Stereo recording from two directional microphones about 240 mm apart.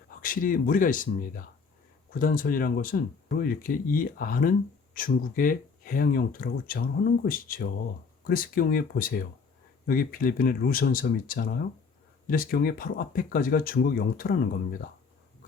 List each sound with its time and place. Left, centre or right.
0.2 s speech: left